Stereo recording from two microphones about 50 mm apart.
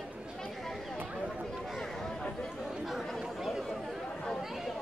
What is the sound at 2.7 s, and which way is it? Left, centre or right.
Chatter, centre.